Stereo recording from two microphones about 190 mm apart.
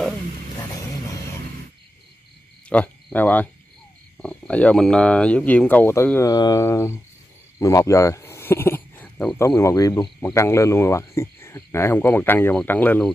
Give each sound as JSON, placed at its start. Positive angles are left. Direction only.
{"t": 0.6, "sound": "vehicle", "side_deg": 15}
{"t": 2.7, "sound": "speech", "side_deg": 5}